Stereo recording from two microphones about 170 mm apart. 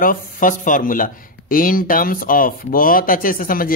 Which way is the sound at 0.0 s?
55° left (ahead or behind).